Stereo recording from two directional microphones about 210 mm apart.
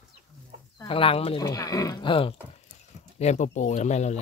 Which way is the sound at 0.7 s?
25° left (ahead or behind).